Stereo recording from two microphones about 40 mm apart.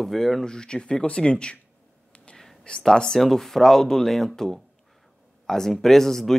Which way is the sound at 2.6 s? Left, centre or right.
Centre.